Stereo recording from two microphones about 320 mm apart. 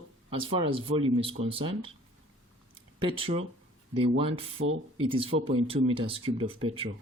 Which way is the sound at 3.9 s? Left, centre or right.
Centre.